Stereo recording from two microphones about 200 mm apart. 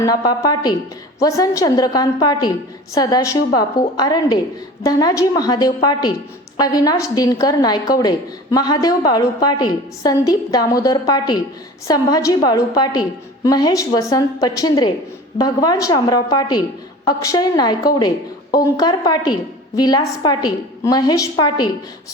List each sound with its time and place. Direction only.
0.0 s a woman's voice: 15° left (ahead or behind)